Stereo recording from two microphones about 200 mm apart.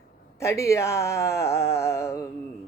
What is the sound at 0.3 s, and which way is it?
Speech, 15° left (ahead or behind).